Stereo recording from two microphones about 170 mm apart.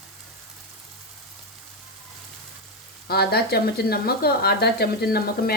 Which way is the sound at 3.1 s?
65° left (ahead or behind).